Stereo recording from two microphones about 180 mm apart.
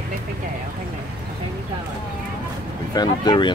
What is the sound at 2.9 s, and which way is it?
Speech, 25° left (ahead or behind).